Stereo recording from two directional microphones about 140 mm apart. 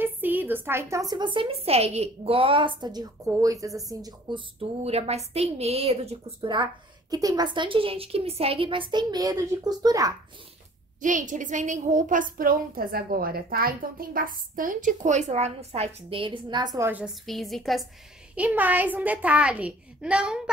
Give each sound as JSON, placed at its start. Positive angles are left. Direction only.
{"t": 0.0, "sound": "a woman's voice", "side_deg": -15}
{"t": 4.3, "sound": "a woman's voice", "side_deg": -45}
{"t": 11.0, "sound": "a woman's voice", "side_deg": -65}
{"t": 16.8, "sound": "a child's voice", "side_deg": -10}
{"t": 17.3, "sound": "a woman's voice", "side_deg": 0}
{"t": 18.3, "sound": "a child's voice", "side_deg": -10}